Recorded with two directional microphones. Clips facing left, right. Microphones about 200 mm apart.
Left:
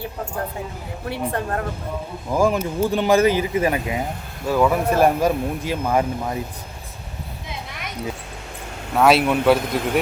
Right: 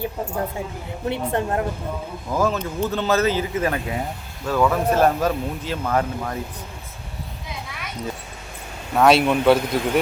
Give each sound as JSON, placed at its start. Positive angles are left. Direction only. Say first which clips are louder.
{"t": 1.0, "sound": "a woman's voice", "louder": "right 2 dB", "side_deg": -20}
{"t": 2.3, "sound": "speech", "louder": "left 3 dB", "side_deg": 10}
{"t": 9.0, "sound": "speech", "louder": "even", "side_deg": 0}